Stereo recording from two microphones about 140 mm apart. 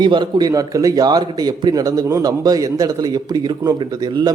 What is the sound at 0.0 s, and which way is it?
A man's voice, 30° right (ahead or behind).